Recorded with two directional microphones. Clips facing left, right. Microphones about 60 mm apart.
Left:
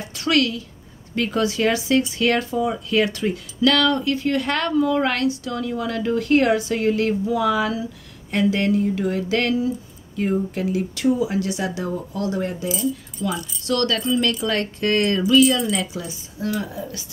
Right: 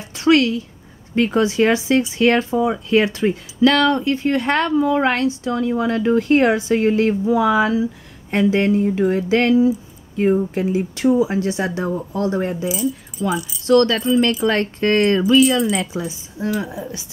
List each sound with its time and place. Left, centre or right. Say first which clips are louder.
0.0 s a woman's voice: right 5 dB; right
13.3 s speech: right 7 dB; centre
13.7 s speech: right 7 dB; right